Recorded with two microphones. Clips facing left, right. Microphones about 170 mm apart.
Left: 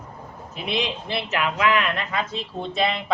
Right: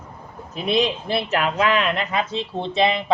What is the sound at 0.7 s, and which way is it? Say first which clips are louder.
Speech: right 6 dB; 40° right (ahead or behind).